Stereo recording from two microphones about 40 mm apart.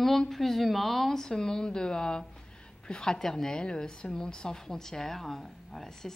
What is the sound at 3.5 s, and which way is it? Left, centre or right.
A woman's voice, left.